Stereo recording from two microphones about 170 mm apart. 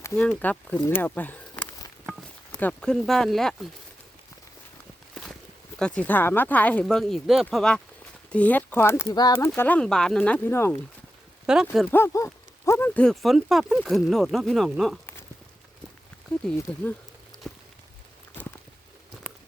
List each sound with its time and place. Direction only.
0.0 s speech: 10° left (ahead or behind)
5.8 s speech: 5° left (ahead or behind); by 9.5 s 25° left (ahead or behind)
9.6 s speech: 10° left (ahead or behind)
11.4 s speech: 5° right (ahead or behind)
11.9 s speech: 15° left (ahead or behind)
16.7 s speech: 10° left (ahead or behind)
17.3 s a sound: 20° right (ahead or behind)